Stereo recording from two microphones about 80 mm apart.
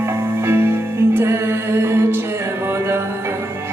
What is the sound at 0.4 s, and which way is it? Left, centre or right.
Music, right.